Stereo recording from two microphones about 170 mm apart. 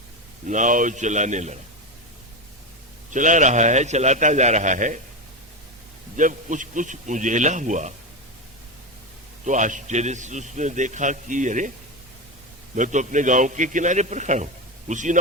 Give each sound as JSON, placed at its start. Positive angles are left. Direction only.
{"t": 0.4, "sound": "a man's voice", "side_deg": -45}
{"t": 3.1, "sound": "a man's voice", "side_deg": -50}
{"t": 6.1, "sound": "a man's voice", "side_deg": -50}
{"t": 9.4, "sound": "a man's voice", "side_deg": -45}
{"t": 12.7, "sound": "a man's voice", "side_deg": -45}